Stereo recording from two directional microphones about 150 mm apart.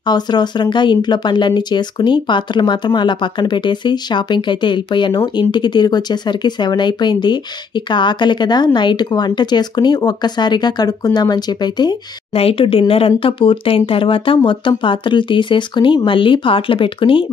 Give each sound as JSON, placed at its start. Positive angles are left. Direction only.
{"t": 0.0, "sound": "speech", "side_deg": 30}
{"t": 12.4, "sound": "speech", "side_deg": 40}